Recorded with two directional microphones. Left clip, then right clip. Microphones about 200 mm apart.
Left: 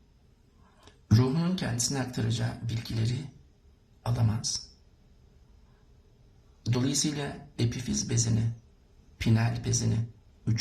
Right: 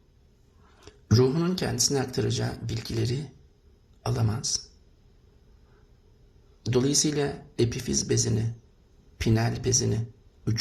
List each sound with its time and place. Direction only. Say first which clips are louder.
0.8 s speech: right 7 dB; 30° right (ahead or behind)
6.6 s speech: right 6 dB; 30° right (ahead or behind)